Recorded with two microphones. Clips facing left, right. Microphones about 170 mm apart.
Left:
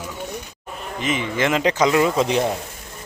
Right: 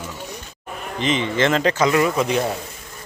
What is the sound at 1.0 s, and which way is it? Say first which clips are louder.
Speech: right 2 dB; 10° left (ahead or behind).